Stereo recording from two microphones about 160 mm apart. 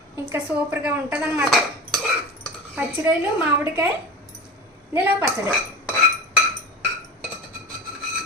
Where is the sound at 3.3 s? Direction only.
10° right (ahead or behind).